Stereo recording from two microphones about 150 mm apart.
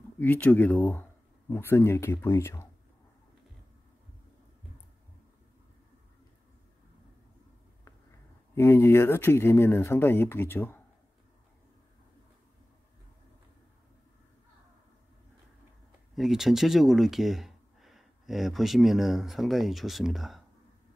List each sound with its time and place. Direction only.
0.2 s speech: 10° left (ahead or behind)
8.5 s speech: 15° left (ahead or behind)
16.2 s speech: centre (ahead or behind)